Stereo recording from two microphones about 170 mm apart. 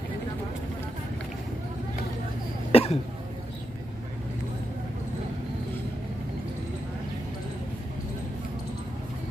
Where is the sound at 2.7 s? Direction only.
35° left (ahead or behind).